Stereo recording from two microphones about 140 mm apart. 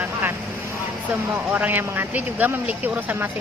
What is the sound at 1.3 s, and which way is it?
Speech, 15° right (ahead or behind).